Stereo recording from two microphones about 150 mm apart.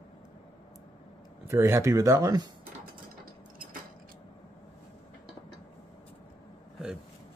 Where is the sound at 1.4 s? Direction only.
15° right (ahead or behind).